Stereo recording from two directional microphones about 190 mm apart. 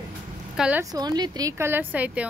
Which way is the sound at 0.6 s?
5° right (ahead or behind).